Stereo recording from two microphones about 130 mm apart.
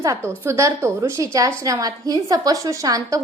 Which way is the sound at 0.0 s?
25° right (ahead or behind).